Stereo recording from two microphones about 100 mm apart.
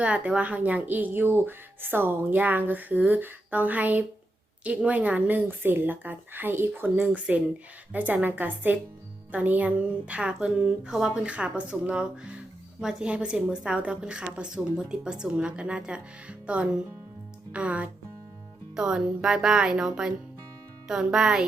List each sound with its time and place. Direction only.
0.0 s speech: 15° right (ahead or behind)